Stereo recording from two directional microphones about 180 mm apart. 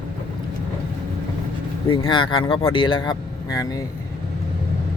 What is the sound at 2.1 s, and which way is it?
Speech, 25° left (ahead or behind).